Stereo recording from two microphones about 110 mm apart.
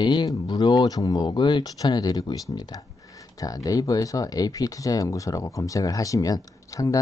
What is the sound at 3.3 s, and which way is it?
Speech, 35° left (ahead or behind).